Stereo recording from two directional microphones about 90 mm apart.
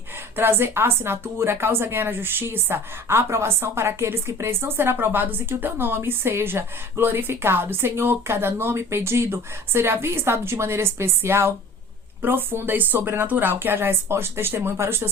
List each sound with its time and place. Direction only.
0.3 s a woman's voice: 25° right (ahead or behind)